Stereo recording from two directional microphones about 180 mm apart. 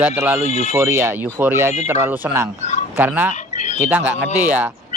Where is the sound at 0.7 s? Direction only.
15° right (ahead or behind).